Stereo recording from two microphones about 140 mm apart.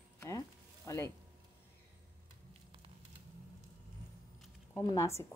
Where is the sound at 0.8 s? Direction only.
20° left (ahead or behind).